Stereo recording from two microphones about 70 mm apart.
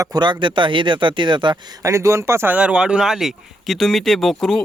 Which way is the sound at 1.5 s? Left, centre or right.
Right.